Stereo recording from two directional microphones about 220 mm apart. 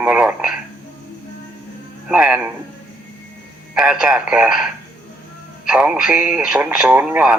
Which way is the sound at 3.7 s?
5° right (ahead or behind).